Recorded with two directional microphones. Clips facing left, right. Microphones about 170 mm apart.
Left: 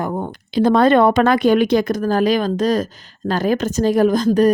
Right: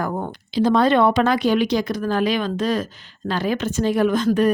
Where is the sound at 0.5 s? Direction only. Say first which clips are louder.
Left 4 dB; 55° left (ahead or behind).